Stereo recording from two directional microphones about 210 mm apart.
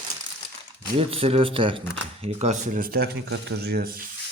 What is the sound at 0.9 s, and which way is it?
Speech, 25° right (ahead or behind).